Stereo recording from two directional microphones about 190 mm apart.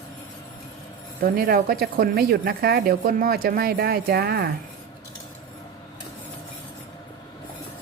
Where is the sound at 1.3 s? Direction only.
50° right (ahead or behind).